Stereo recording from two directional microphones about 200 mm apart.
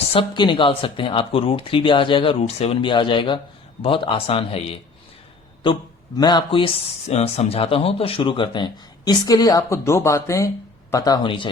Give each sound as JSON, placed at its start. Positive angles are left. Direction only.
{"t": 0.1, "sound": "speech", "side_deg": 25}
{"t": 6.1, "sound": "speech", "side_deg": 20}